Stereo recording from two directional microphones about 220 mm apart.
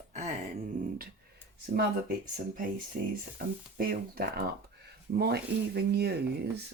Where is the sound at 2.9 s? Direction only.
40° right (ahead or behind).